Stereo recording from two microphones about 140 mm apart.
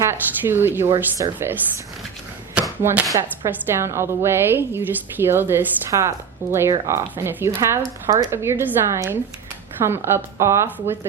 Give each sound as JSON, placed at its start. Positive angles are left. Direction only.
{"t": 0.0, "sound": "a woman's voice", "side_deg": -15}
{"t": 2.6, "sound": "chopping", "side_deg": -10}
{"t": 3.4, "sound": "a woman's voice", "side_deg": -20}